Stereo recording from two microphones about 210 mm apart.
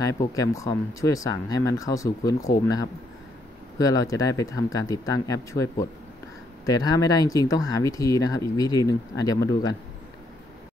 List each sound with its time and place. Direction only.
0.0 s speech: 15° left (ahead or behind)